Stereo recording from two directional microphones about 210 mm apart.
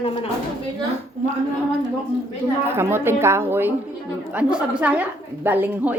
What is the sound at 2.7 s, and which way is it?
A woman's voice, 10° right (ahead or behind).